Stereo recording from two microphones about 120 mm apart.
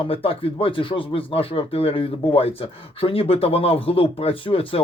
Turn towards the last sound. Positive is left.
turn(degrees=50)  # may be behind; listen again after turning